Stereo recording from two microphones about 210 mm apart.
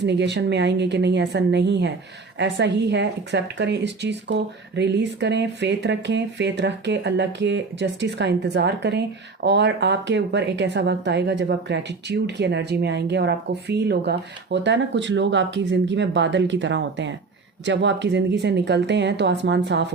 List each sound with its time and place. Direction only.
0.0 s speech: 55° right (ahead or behind)